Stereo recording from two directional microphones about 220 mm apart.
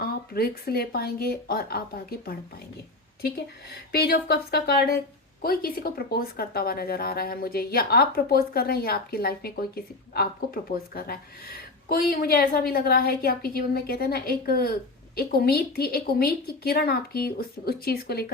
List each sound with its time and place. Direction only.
0.0 s a woman's voice: 45° left (ahead or behind)